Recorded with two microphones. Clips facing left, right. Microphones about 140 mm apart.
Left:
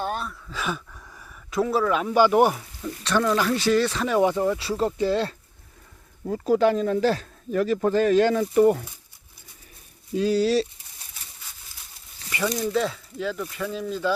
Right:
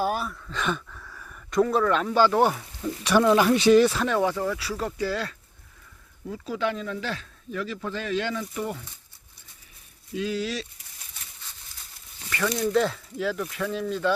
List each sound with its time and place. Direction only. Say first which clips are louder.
0.0 s a sound: right 2 dB; 5° right (ahead or behind); by 1.3 s 15° left (ahead or behind)
1.3 s speech: right 1 dB; 5° left (ahead or behind)
2.8 s speech: right 3 dB; 10° right (ahead or behind)
4.1 s speech: left 4 dB; 20° left (ahead or behind)
6.2 s speech: left 9 dB; 45° left (ahead or behind)
10.2 s speech: left 8 dB; 35° left (ahead or behind)
12.3 s speech: left 1 dB; 15° left (ahead or behind)
12.7 s speech: right 1 dB; centre (ahead or behind)